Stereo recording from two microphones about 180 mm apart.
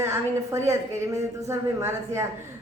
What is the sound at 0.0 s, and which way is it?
A woman's voice, 15° right (ahead or behind).